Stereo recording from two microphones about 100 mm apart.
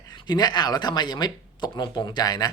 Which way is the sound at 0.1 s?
45° left (ahead or behind).